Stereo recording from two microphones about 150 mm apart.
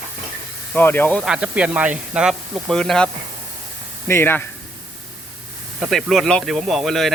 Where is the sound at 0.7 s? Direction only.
15° left (ahead or behind).